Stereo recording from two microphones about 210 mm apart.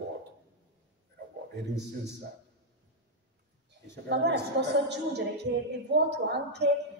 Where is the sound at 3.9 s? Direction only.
55° right (ahead or behind).